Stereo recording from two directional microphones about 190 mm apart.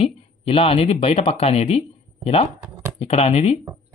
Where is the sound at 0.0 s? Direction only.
30° left (ahead or behind).